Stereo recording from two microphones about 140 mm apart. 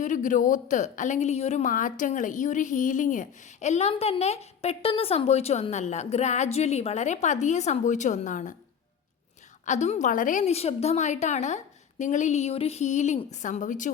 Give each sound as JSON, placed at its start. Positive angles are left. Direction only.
{"t": 0.0, "sound": "a woman's voice", "side_deg": 65}
{"t": 9.6, "sound": "a woman's voice", "side_deg": 55}